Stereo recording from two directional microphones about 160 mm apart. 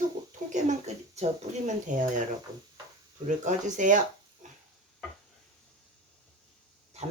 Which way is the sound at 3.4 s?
50° right (ahead or behind).